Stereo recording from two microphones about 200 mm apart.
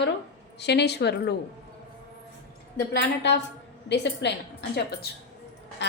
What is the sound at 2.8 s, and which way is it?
A woman's voice, 60° left (ahead or behind).